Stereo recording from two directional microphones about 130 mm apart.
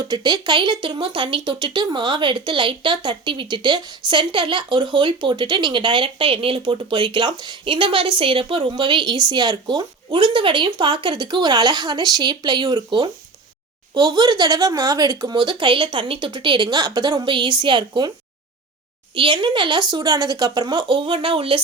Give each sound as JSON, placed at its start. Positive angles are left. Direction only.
{"t": 0.0, "sound": "speech", "side_deg": -35}
{"t": 19.1, "sound": "speech", "side_deg": -40}